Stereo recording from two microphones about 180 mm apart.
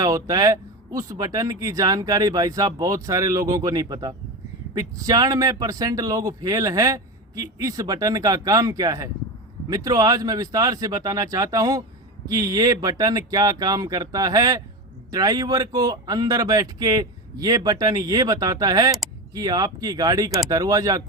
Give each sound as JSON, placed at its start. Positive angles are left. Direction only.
{"t": 0.0, "sound": "a man's voice", "side_deg": -20}